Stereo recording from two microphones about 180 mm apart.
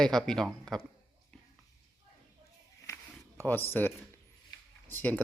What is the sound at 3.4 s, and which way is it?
Speech, 10° left (ahead or behind).